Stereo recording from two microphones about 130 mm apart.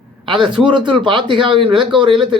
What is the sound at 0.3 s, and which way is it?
Speech, 40° right (ahead or behind).